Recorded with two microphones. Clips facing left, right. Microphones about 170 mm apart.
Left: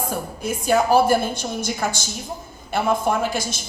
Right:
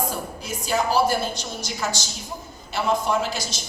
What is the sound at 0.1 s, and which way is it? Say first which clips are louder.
A woman's voice: left 5 dB; 55° left (ahead or behind).